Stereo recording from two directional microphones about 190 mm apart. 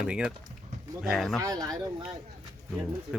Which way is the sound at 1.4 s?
20° right (ahead or behind).